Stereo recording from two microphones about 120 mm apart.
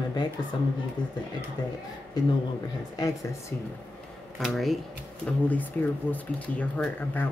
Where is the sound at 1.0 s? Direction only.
40° left (ahead or behind).